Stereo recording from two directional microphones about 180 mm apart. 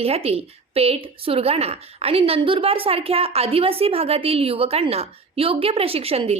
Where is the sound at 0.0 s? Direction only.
35° right (ahead or behind).